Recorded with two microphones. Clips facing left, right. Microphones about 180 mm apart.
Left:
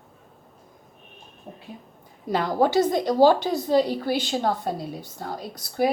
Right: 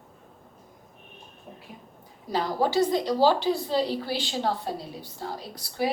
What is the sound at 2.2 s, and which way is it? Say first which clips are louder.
A woman's voice: left 4 dB; 50° left (ahead or behind).